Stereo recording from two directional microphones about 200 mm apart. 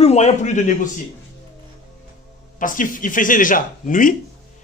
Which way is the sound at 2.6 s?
40° left (ahead or behind).